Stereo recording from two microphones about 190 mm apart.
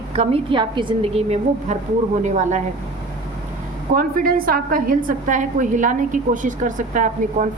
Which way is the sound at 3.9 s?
50° right (ahead or behind).